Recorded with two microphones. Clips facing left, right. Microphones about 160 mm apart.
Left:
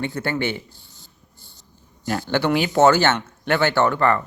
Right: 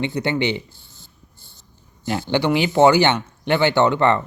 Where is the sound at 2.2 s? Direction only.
15° right (ahead or behind).